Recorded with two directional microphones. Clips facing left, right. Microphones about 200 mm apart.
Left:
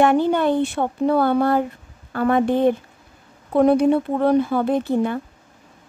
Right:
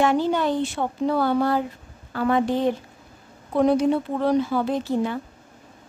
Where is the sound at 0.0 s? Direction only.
55° left (ahead or behind).